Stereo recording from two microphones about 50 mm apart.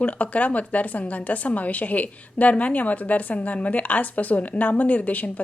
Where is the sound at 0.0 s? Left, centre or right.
Left.